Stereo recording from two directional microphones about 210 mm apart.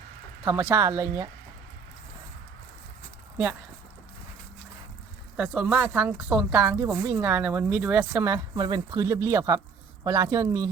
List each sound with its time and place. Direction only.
0.4 s a woman's voice: 10° right (ahead or behind)
5.4 s a woman's voice: 5° right (ahead or behind)